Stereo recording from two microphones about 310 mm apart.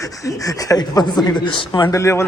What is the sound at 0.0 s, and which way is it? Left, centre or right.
Speech, centre.